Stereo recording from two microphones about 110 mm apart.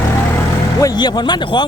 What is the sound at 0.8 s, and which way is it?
Speech, 35° left (ahead or behind).